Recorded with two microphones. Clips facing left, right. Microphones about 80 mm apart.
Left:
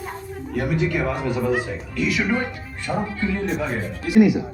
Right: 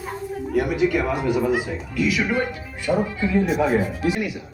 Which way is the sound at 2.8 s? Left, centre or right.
Centre.